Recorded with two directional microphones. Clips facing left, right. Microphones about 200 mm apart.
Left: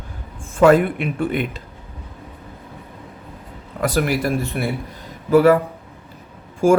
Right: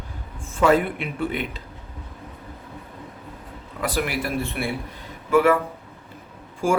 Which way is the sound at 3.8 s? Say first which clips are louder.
Left 6 dB; 45° left (ahead or behind).